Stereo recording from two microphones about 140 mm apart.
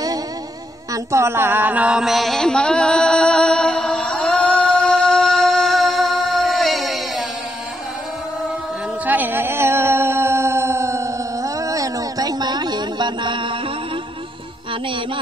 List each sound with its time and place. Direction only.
0.9 s mantra: 20° right (ahead or behind); by 7.2 s centre (ahead or behind)
9.0 s music: 10° right (ahead or behind); by 13.6 s 35° right (ahead or behind)